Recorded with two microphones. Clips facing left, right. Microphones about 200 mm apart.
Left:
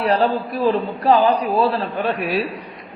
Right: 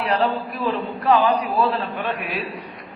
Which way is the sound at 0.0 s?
35° left (ahead or behind).